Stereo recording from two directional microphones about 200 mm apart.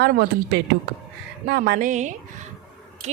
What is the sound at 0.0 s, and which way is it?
A woman's voice, 50° right (ahead or behind).